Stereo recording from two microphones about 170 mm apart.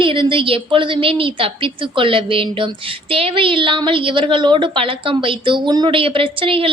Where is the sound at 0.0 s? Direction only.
30° right (ahead or behind).